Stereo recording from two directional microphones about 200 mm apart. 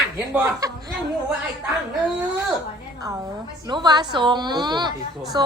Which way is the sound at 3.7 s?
20° right (ahead or behind).